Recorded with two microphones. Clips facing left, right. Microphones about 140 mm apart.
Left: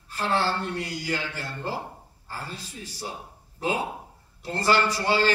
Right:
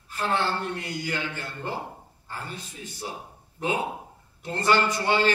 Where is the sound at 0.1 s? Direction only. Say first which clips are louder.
Left 1 dB; 35° left (ahead or behind).